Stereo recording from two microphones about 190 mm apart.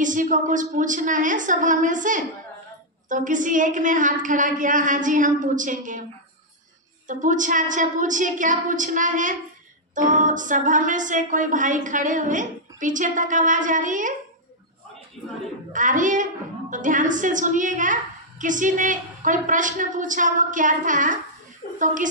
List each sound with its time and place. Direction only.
0.0 s a woman's voice: 45° right (ahead or behind)
7.1 s a woman's voice: 40° right (ahead or behind)
15.7 s a woman's voice: 45° right (ahead or behind)